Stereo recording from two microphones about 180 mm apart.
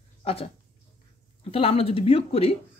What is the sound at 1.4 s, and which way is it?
Speech, 35° left (ahead or behind).